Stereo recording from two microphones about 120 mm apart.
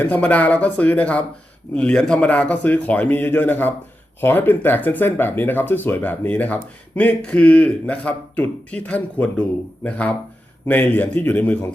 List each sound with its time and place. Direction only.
0.0 s speech: 15° left (ahead or behind)